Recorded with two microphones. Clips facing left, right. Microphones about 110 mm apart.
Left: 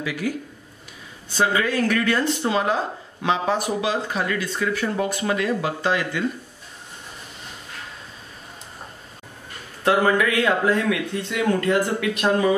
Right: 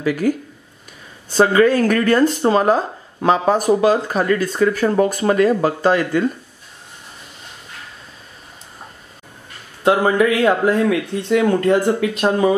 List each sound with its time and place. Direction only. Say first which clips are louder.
0.0 s speech: right 8 dB; 45° right (ahead or behind)
1.3 s speech: right 8 dB; 45° right (ahead or behind)
9.8 s speech: right 4 dB; 25° right (ahead or behind)